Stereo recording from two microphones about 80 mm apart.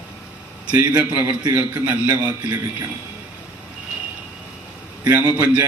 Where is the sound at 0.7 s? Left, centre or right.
Centre.